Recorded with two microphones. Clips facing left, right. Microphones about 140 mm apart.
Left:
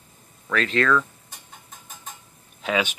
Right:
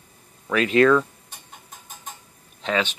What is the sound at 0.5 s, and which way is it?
Speech, 15° right (ahead or behind).